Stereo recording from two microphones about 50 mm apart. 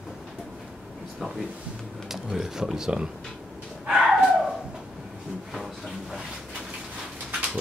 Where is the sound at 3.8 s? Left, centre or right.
Right.